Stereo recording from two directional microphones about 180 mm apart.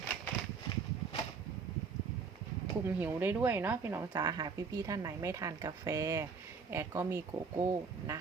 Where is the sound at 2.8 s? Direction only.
10° right (ahead or behind).